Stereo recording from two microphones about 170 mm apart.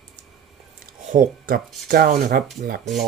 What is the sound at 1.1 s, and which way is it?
Speech, 50° right (ahead or behind).